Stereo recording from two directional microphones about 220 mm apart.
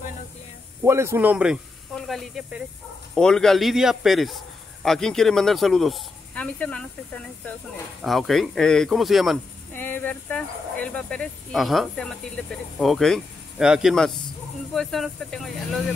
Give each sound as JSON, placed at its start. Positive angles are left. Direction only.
{"t": 0.8, "sound": "speech", "side_deg": -10}
{"t": 8.0, "sound": "speech", "side_deg": 0}